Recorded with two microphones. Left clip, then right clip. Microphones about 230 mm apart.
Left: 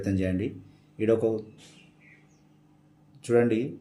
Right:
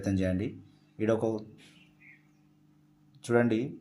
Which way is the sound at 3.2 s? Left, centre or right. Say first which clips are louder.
Left 4 dB; centre.